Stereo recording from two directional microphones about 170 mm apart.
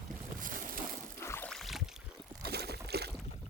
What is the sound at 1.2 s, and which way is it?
Boat, 15° left (ahead or behind).